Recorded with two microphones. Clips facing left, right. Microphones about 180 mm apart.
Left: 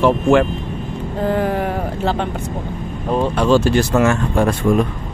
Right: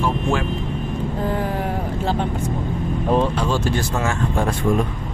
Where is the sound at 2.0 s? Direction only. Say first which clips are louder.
Left 3 dB; 75° left (ahead or behind).